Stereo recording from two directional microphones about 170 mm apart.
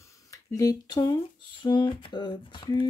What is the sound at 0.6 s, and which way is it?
Speech, 20° left (ahead or behind).